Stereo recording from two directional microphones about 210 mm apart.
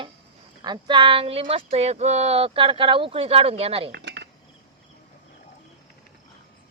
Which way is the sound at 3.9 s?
55° right (ahead or behind).